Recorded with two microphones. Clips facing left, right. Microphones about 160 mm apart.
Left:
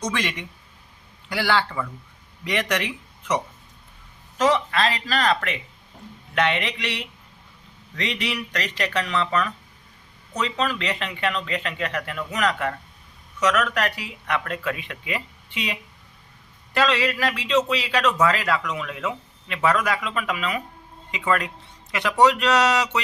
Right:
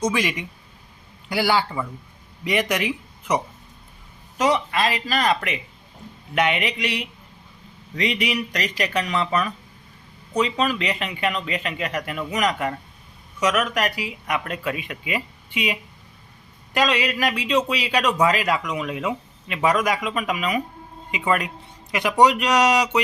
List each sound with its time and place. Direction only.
0.0 s a man's voice: 10° right (ahead or behind)